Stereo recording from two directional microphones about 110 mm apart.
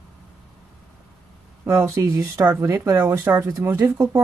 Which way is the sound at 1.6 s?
20° right (ahead or behind).